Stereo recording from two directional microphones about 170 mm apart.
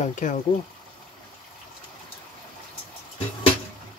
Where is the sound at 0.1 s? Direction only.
45° left (ahead or behind).